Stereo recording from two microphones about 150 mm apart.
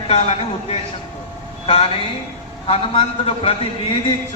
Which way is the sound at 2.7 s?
40° left (ahead or behind).